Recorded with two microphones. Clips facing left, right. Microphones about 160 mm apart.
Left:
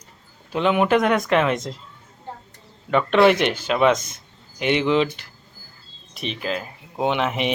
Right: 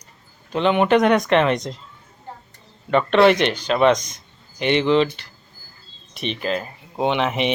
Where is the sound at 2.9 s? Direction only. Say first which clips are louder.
Right 1 dB; 5° left (ahead or behind).